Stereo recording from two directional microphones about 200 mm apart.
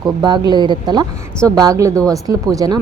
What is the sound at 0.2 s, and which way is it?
Speech, 20° right (ahead or behind).